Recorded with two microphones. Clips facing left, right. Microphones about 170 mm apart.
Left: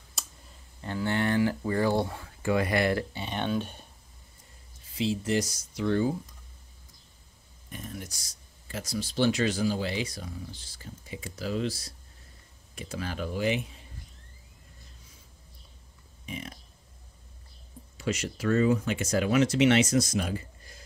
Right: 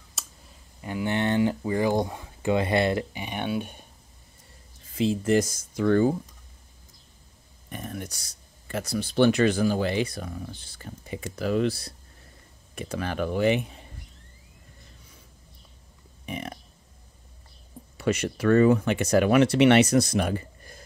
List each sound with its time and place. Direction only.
0.2 s clicking: centre (ahead or behind)
0.7 s speech: 15° right (ahead or behind)
4.8 s speech: 50° right (ahead or behind)
7.7 s speech: 60° right (ahead or behind)
16.3 s speech: 60° right (ahead or behind)
17.9 s speech: 60° right (ahead or behind)